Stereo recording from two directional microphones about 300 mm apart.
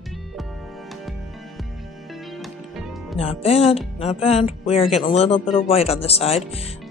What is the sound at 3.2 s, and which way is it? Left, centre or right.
Speech, centre.